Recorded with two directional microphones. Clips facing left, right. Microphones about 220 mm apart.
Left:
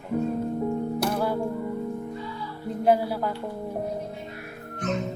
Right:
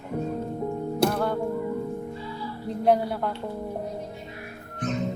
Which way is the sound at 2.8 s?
5° left (ahead or behind).